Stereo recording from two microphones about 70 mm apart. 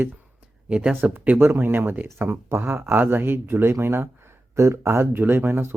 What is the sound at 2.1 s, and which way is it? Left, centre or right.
Speech, right.